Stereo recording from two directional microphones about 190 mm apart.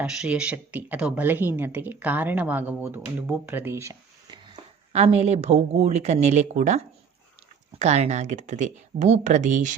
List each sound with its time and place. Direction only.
0.0 s speech: 5° right (ahead or behind)
4.9 s speech: 35° right (ahead or behind)